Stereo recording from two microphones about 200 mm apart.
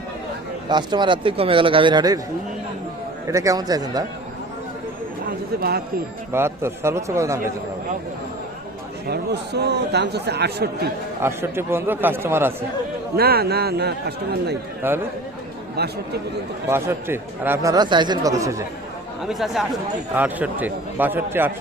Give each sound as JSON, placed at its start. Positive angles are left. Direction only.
{"t": 0.7, "sound": "a man's voice", "side_deg": -20}
{"t": 3.2, "sound": "speech", "side_deg": -15}
{"t": 6.3, "sound": "speech", "side_deg": -10}
{"t": 9.0, "sound": "speech", "side_deg": -55}
{"t": 11.2, "sound": "speech", "side_deg": -10}
{"t": 13.1, "sound": "speech", "side_deg": -50}
{"t": 14.8, "sound": "a man's voice", "side_deg": -10}
{"t": 15.7, "sound": "speech", "side_deg": -55}
{"t": 16.6, "sound": "speech", "side_deg": -15}
{"t": 19.2, "sound": "speech", "side_deg": 0}